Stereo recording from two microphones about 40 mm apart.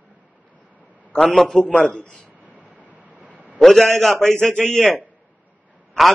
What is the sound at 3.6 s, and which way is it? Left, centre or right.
Speech, centre.